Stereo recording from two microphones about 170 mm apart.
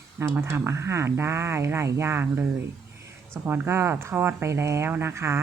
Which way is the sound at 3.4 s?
15° right (ahead or behind).